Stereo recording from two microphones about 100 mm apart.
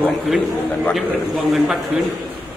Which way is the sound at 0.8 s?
Centre (ahead or behind).